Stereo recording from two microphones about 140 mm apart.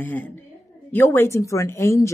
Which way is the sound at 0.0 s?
15° left (ahead or behind).